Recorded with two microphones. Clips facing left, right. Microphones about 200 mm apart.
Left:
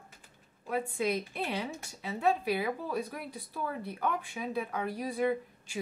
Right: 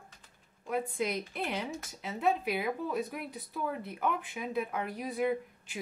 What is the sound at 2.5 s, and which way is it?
A woman's voice, 20° right (ahead or behind).